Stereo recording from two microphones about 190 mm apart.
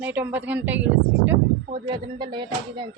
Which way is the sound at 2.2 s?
25° right (ahead or behind).